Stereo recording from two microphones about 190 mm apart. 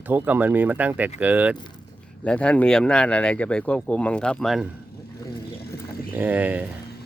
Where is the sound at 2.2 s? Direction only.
5° left (ahead or behind).